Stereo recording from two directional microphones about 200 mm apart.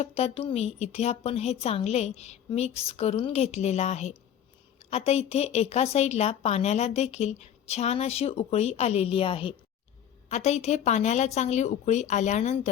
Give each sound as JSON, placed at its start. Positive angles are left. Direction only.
{"t": 0.0, "sound": "a woman's voice", "side_deg": 30}